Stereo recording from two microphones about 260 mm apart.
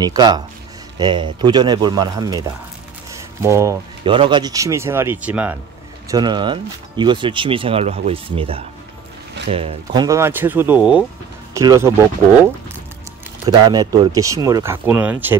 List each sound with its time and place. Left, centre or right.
0.0 s speech: centre
13.7 s speech: centre